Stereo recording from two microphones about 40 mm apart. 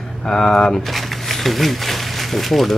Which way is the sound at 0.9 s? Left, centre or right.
Centre.